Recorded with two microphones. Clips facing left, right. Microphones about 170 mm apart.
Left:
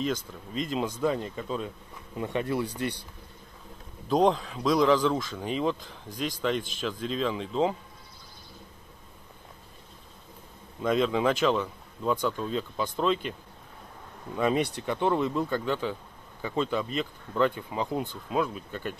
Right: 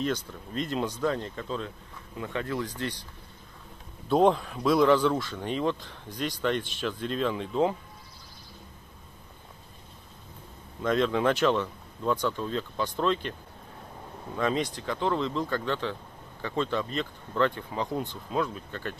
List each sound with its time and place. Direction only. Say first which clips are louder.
0.0 s speech: even; centre (ahead or behind)
4.1 s speech: right 1 dB; 5° right (ahead or behind)
10.8 s speech: even; 5° left (ahead or behind)
14.3 s speech: left 2 dB; 10° left (ahead or behind)